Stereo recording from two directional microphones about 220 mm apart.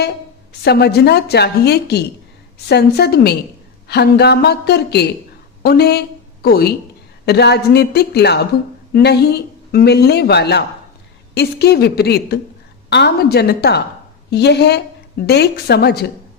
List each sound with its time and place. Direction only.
0.6 s a woman's voice: 45° left (ahead or behind)